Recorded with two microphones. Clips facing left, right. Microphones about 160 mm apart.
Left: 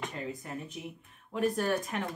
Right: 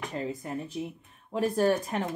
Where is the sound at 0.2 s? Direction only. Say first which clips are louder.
Right 5 dB; 30° right (ahead or behind).